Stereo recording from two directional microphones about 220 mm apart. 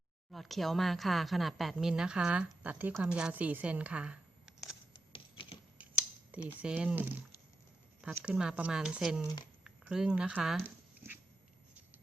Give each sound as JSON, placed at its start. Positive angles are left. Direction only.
{"t": 0.3, "sound": "speech", "side_deg": 0}
{"t": 4.9, "sound": "typewriter", "side_deg": 20}
{"t": 6.6, "sound": "speech", "side_deg": -5}